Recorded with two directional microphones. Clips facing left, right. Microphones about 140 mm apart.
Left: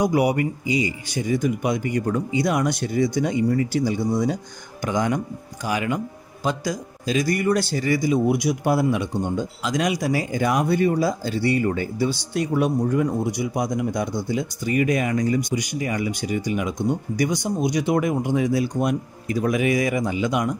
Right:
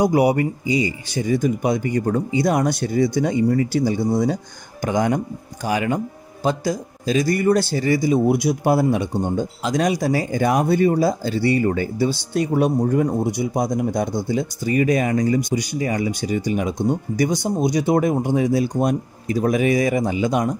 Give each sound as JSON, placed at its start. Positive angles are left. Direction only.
{"t": 0.0, "sound": "speech", "side_deg": -35}
{"t": 8.9, "sound": "speech", "side_deg": -40}